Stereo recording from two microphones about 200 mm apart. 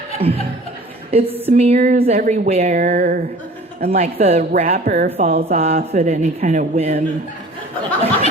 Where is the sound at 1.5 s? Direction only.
30° right (ahead or behind).